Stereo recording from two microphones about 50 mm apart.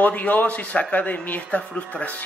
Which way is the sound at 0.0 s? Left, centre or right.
Left.